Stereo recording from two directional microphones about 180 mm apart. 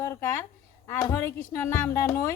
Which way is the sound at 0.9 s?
15° left (ahead or behind).